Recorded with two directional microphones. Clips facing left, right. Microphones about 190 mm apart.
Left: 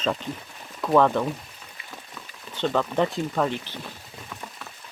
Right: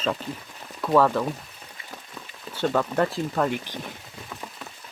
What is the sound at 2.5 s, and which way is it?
Speech, 10° right (ahead or behind).